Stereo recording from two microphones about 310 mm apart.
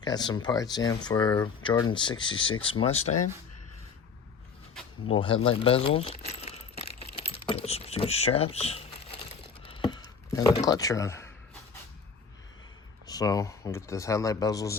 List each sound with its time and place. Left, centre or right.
0.0 s speech: centre
5.1 s speech: centre
7.2 s typing: centre
9.6 s a sound: centre
13.1 s speech: centre